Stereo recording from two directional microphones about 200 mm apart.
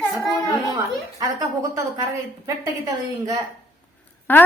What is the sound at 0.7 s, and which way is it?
A woman's voice, 20° right (ahead or behind).